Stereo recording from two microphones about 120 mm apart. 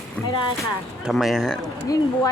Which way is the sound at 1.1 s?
Centre (ahead or behind).